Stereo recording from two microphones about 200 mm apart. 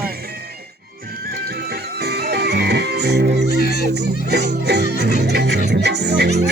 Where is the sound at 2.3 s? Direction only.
55° right (ahead or behind).